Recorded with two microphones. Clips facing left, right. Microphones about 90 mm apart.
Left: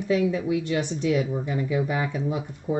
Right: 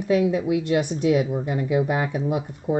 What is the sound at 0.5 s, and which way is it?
Speech, 55° right (ahead or behind).